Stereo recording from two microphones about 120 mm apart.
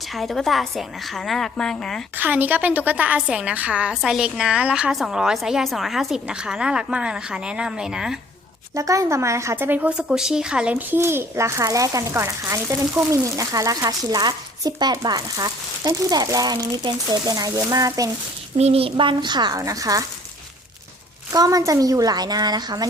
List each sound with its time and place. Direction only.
0.2 s a woman's voice: centre (ahead or behind)
2.1 s a woman's voice: 15° right (ahead or behind)
8.7 s speech: 25° right (ahead or behind)
18.5 s a woman's voice: 60° right (ahead or behind); by 20.1 s 30° right (ahead or behind)
21.3 s a woman's voice: 30° right (ahead or behind)